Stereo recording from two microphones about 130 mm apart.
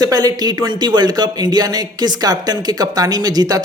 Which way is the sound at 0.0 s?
30° right (ahead or behind).